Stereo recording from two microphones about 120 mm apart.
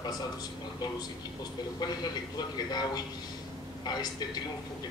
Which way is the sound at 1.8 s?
35° left (ahead or behind).